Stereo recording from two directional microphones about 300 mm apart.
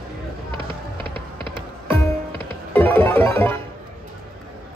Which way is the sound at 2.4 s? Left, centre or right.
Centre.